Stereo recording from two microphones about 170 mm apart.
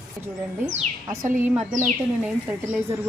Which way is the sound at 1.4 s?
10° right (ahead or behind).